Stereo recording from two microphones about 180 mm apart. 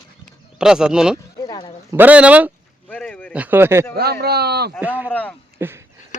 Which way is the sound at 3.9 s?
60° right (ahead or behind).